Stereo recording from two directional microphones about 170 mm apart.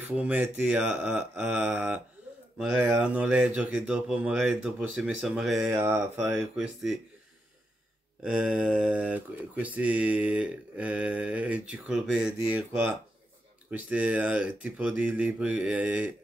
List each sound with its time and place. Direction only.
0.0 s speech: 10° right (ahead or behind)
3.0 s speech: 5° right (ahead or behind)
5.7 s speech: 15° right (ahead or behind)
6.3 s speech: 5° right (ahead or behind)
8.2 s speech: 5° right (ahead or behind)